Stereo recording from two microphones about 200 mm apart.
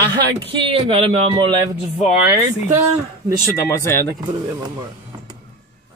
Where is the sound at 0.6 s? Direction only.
25° right (ahead or behind).